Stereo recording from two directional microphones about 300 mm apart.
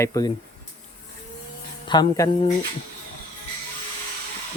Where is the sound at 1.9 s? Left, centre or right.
Centre.